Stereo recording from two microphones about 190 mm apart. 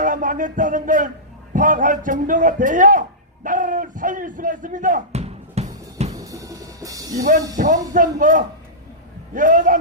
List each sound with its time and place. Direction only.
0.0 s a man's voice: 45° right (ahead or behind)
6.1 s music: 20° right (ahead or behind)
7.5 s speech: 45° right (ahead or behind)